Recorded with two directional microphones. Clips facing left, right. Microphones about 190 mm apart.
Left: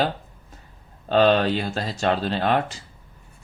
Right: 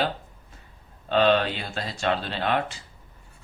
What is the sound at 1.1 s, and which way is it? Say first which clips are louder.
Speech: left 3 dB; 40° left (ahead or behind).